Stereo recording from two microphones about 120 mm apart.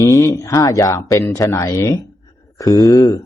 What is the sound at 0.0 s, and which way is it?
A man's voice, 25° left (ahead or behind).